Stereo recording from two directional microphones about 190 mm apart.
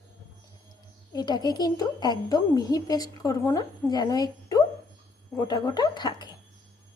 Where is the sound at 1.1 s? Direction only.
20° left (ahead or behind).